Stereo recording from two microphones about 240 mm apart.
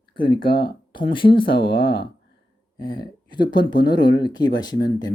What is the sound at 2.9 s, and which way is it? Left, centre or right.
Speech, centre.